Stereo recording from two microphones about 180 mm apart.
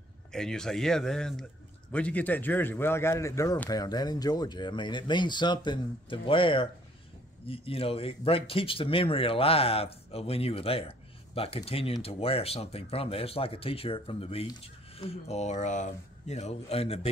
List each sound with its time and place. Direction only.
0.3 s speech: 5° left (ahead or behind); by 17.1 s 35° left (ahead or behind)